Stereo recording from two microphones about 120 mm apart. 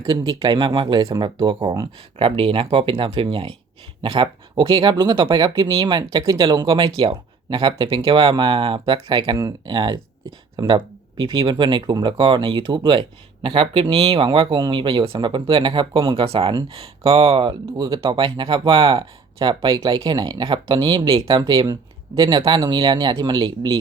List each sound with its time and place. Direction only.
0.0 s speech: 35° right (ahead or behind)
2.1 s speech: 50° right (ahead or behind)
14.3 s speech: 40° right (ahead or behind)
19.4 s speech: 35° right (ahead or behind)